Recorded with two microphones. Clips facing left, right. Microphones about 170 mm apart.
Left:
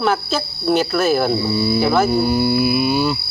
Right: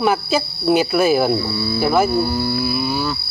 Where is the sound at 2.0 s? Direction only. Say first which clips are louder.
Left 3 dB; 20° left (ahead or behind).